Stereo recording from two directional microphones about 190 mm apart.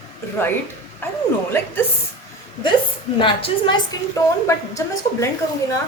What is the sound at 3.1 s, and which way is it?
A woman's voice, 25° left (ahead or behind).